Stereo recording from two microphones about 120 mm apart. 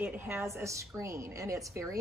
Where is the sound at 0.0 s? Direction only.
20° right (ahead or behind).